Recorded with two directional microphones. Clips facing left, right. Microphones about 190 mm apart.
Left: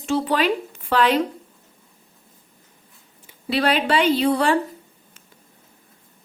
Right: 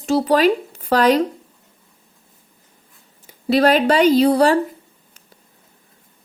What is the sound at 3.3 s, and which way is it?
Speech, 40° right (ahead or behind).